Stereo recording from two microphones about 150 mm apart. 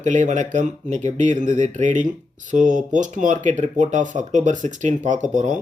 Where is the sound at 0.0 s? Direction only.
55° right (ahead or behind).